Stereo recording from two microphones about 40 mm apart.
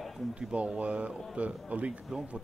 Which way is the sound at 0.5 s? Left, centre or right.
Right.